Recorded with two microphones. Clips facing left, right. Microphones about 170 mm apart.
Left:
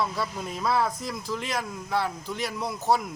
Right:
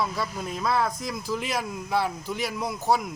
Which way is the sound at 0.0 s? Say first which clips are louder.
Even; centre (ahead or behind).